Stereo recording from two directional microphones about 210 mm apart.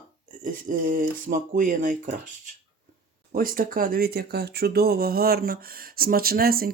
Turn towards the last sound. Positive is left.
turn(degrees=-45)  # may be behind; listen again after turning